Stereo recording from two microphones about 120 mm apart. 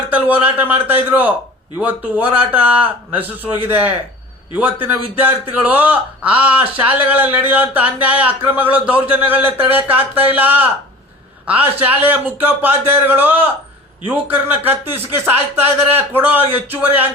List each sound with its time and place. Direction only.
0.1 s a man's voice: 15° right (ahead or behind)
11.8 s a man's voice: 15° right (ahead or behind)